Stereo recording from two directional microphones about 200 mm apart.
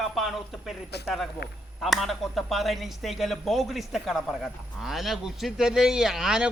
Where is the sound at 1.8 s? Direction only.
Centre (ahead or behind).